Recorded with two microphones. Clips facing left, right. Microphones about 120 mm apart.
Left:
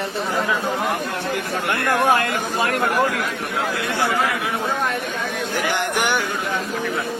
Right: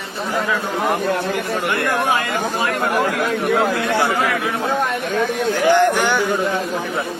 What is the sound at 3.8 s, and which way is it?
Speech, 25° right (ahead or behind).